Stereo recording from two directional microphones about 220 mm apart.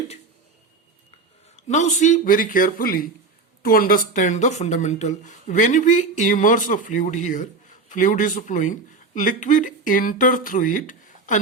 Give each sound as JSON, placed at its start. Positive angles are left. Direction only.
{"t": 1.6, "sound": "speech", "side_deg": 35}